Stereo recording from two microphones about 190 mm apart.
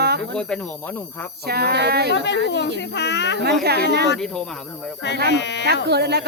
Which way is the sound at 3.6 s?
55° right (ahead or behind).